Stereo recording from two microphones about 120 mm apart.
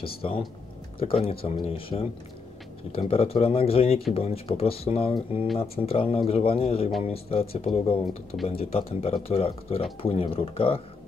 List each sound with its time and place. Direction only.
0.0 s speech: 50° left (ahead or behind)